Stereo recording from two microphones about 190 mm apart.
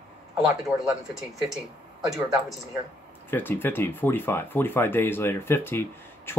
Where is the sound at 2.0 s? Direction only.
20° right (ahead or behind).